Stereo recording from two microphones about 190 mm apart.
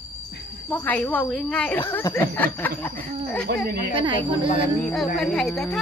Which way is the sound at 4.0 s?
25° right (ahead or behind).